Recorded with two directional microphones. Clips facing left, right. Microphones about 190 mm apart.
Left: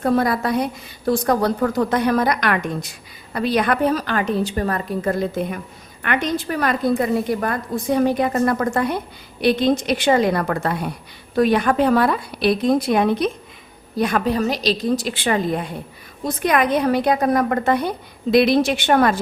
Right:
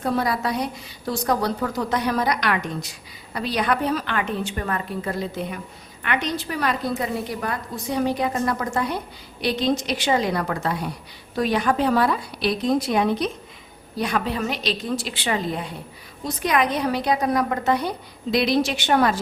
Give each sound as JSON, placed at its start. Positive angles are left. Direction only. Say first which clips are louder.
{"t": 0.0, "sound": "a woman's voice", "louder": "left 5 dB", "side_deg": 50}